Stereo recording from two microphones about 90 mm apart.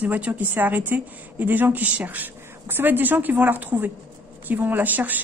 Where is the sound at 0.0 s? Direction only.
20° right (ahead or behind).